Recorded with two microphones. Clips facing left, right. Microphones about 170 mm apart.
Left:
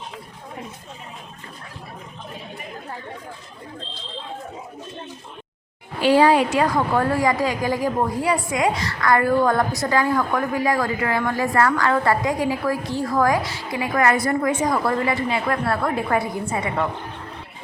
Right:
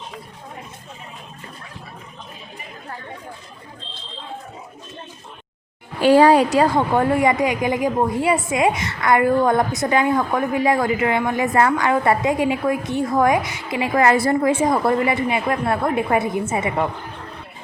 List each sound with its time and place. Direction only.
6.0 s a woman's voice: 45° right (ahead or behind); by 16.8 s 20° right (ahead or behind)